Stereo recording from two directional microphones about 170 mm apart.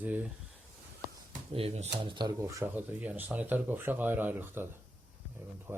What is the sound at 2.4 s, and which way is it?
Speech, 15° right (ahead or behind).